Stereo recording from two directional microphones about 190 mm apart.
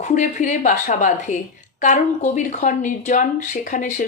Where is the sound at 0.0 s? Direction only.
45° left (ahead or behind).